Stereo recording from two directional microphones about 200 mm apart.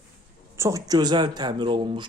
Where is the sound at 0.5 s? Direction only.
15° right (ahead or behind).